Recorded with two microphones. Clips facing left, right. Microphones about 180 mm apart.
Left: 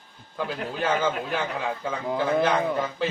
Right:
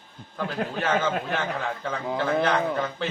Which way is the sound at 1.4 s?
10° left (ahead or behind).